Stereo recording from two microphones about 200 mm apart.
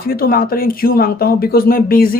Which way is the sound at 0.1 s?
45° left (ahead or behind).